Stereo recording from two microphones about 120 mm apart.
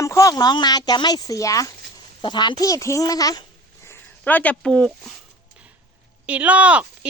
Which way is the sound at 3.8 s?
15° left (ahead or behind).